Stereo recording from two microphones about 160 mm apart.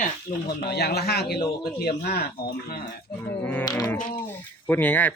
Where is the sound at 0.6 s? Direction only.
90° left.